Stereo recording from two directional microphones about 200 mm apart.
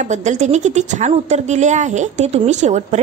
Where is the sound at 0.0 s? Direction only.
35° right (ahead or behind).